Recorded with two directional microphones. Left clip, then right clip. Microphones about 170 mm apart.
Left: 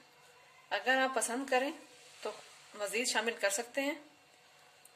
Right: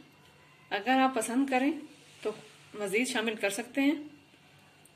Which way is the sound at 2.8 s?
30° left (ahead or behind).